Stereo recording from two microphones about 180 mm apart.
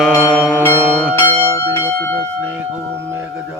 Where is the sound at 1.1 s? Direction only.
10° left (ahead or behind).